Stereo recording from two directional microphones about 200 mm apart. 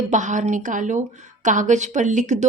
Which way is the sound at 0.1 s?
40° right (ahead or behind).